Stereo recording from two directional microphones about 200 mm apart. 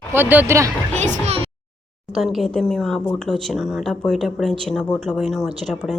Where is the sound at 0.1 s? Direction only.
10° right (ahead or behind).